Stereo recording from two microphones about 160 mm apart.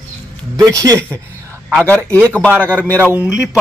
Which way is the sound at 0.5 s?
20° right (ahead or behind).